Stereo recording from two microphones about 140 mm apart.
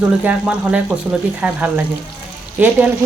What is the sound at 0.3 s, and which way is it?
Speech, 10° right (ahead or behind).